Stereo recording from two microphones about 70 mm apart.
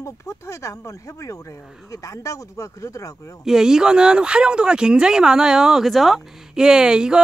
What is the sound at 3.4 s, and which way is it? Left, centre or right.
Speech, centre.